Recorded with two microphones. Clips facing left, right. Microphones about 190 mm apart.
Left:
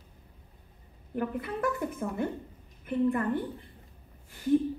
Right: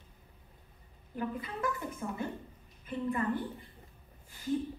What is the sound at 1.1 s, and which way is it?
A woman's voice, 60° left (ahead or behind).